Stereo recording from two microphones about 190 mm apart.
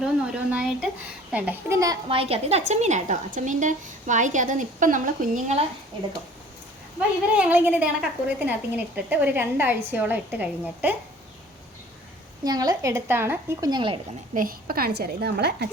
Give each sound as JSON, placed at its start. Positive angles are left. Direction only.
{"t": 0.0, "sound": "a woman's voice", "side_deg": -5}
{"t": 2.0, "sound": "a woman's voice", "side_deg": -30}
{"t": 7.3, "sound": "a woman's voice", "side_deg": -10}
{"t": 12.5, "sound": "a woman's voice", "side_deg": -20}
{"t": 14.3, "sound": "a woman's voice", "side_deg": -50}